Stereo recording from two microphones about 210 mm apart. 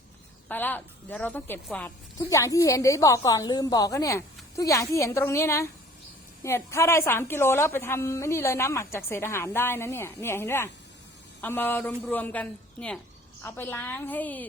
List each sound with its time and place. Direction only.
0.4 s a woman's voice: 10° left (ahead or behind)